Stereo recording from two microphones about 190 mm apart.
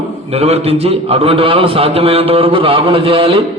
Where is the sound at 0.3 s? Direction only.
30° right (ahead or behind).